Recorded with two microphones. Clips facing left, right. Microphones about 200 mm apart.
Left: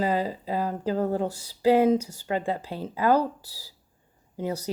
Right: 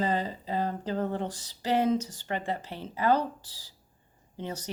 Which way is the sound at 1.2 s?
10° left (ahead or behind).